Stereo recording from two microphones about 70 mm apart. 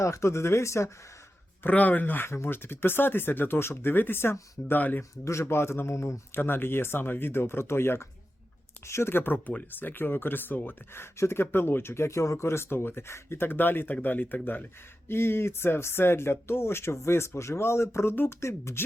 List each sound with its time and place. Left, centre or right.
0.0 s speech: left
1.6 s speech: left
5.1 s speech: left
6.3 s speech: left